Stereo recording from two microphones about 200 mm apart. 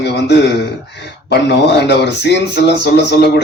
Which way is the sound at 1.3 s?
55° left (ahead or behind).